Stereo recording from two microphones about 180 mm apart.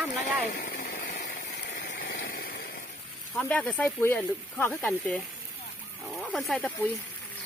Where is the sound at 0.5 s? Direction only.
55° left (ahead or behind).